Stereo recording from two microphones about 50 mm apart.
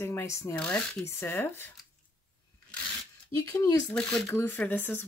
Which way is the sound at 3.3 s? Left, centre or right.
Left.